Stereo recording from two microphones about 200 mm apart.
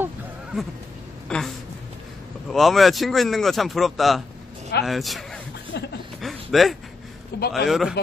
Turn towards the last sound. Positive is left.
turn(degrees=0)  # may be behind; listen again after turning